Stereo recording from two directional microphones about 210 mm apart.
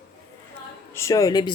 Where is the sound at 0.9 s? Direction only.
15° left (ahead or behind).